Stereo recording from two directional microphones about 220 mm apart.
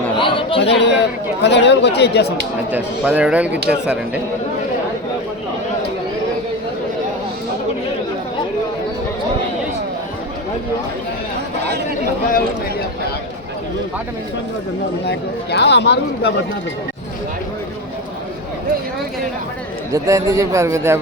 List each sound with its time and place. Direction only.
0.2 s chatter: 25° left (ahead or behind)
0.6 s speech: 50° left (ahead or behind)
2.7 s a man's voice: 5° right (ahead or behind)
15.0 s speech: 50° left (ahead or behind)
19.9 s a man's voice: 15° right (ahead or behind)